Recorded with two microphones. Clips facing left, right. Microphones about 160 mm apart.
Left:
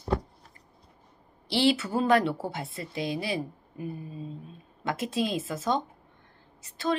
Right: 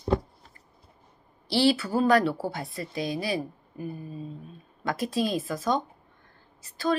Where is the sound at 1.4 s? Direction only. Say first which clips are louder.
Right 1 dB; 20° left (ahead or behind).